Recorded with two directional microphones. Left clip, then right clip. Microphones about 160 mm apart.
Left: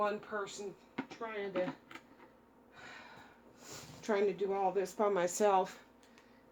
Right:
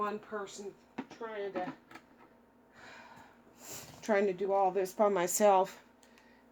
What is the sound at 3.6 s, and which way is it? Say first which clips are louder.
Speech: right 2 dB; 70° right (ahead or behind).